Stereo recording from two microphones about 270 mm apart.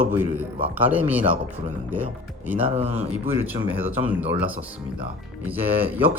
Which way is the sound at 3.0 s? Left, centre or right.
Centre.